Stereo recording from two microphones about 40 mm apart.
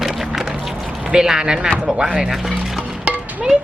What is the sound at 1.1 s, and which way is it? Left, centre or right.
Speech, centre.